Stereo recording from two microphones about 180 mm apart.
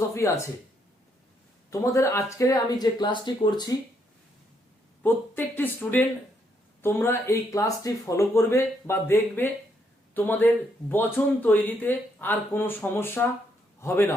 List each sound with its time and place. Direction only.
0.1 s a sound: 15° left (ahead or behind)
1.7 s speech: 15° left (ahead or behind)
5.0 s speech: 10° left (ahead or behind)